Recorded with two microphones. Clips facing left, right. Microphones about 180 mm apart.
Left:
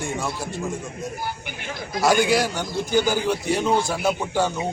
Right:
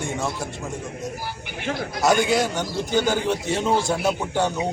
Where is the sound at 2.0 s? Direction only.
20° right (ahead or behind).